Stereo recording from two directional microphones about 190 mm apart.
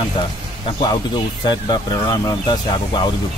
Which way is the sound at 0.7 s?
25° left (ahead or behind).